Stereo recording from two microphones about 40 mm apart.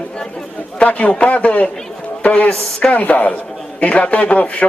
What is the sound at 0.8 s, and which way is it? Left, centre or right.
A man's voice, left.